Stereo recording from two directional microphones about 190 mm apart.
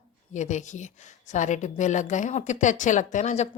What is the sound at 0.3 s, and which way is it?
Speech, 40° left (ahead or behind).